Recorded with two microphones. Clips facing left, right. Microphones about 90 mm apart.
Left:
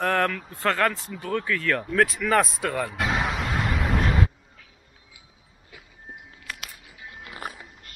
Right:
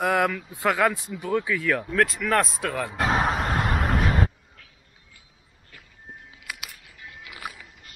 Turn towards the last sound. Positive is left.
turn(degrees=40)  # may be behind; listen again after turning